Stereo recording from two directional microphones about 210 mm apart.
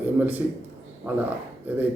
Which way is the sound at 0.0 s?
10° right (ahead or behind).